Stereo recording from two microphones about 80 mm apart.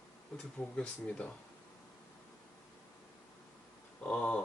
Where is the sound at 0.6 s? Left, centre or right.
Centre.